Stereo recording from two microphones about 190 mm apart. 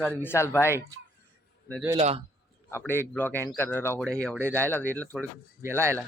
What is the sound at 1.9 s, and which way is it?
Speech, 30° right (ahead or behind).